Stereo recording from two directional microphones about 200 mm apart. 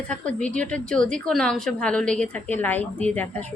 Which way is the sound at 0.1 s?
5° left (ahead or behind).